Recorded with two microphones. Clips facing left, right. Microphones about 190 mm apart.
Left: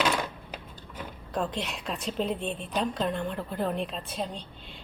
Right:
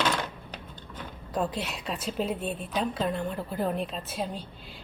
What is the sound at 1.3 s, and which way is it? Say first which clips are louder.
A woman's voice: right 1 dB; 5° right (ahead or behind).